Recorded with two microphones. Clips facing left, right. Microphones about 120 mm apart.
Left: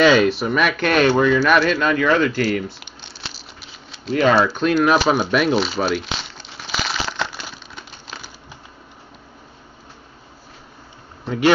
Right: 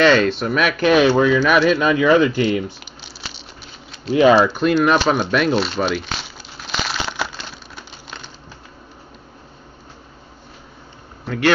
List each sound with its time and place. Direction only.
0.0 s speech: 5° left (ahead or behind); by 2.4 s 10° right (ahead or behind)
2.8 s crumpling: centre (ahead or behind)
4.1 s speech: 10° right (ahead or behind)
4.4 s shuffling cards: centre (ahead or behind)
7.5 s crumpling: centre (ahead or behind)
11.2 s speech: 15° left (ahead or behind)